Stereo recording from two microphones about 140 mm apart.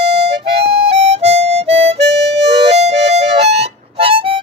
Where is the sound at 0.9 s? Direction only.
45° right (ahead or behind).